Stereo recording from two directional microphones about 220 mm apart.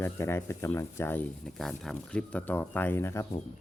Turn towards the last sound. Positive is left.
turn(degrees=10)  # may be behind; listen again after turning